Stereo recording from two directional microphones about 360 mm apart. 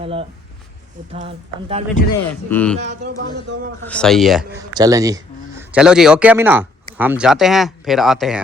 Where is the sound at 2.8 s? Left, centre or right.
Right.